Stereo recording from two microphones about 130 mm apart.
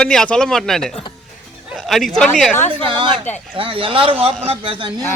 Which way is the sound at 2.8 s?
40° right (ahead or behind).